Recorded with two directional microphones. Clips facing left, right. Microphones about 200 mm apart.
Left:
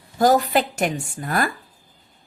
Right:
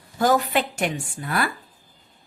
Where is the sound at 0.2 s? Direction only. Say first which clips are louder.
Left 3 dB; 40° left (ahead or behind).